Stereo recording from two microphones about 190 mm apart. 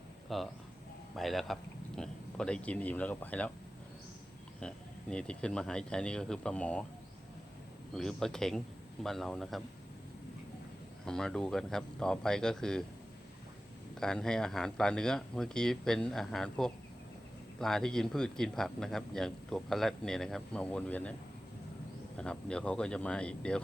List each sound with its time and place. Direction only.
0.3 s a man's voice: centre (ahead or behind)
4.6 s a man's voice: 5° left (ahead or behind)
7.9 s a man's voice: 5° left (ahead or behind)
11.0 s a man's voice: 5° left (ahead or behind)
13.9 s a man's voice: 5° left (ahead or behind)
22.2 s a man's voice: 5° left (ahead or behind)